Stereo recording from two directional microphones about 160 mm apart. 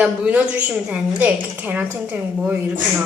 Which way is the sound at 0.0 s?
10° right (ahead or behind).